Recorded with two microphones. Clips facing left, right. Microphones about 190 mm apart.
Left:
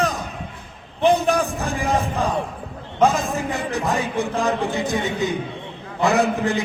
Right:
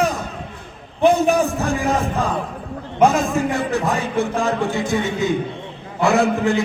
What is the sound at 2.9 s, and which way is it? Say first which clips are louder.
Speech: right 3 dB; 15° right (ahead or behind).